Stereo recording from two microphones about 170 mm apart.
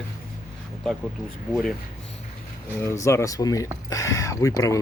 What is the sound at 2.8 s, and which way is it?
Speech, 15° left (ahead or behind).